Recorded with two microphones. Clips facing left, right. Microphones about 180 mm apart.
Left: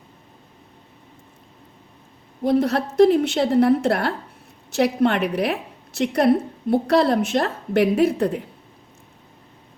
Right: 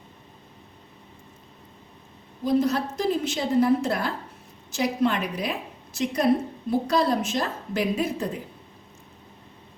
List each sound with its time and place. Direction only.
2.4 s a woman's voice: 65° left (ahead or behind)